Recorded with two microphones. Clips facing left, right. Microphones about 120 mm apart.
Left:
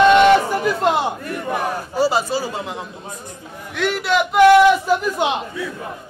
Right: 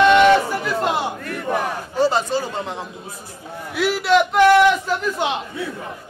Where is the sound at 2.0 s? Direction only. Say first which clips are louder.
Even; 5° left (ahead or behind).